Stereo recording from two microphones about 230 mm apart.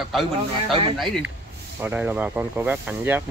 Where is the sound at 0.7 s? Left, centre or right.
Right.